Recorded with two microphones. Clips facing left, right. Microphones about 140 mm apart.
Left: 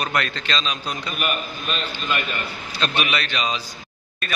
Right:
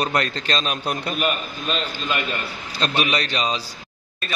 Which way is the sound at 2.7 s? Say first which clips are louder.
Right 2 dB; 40° right (ahead or behind).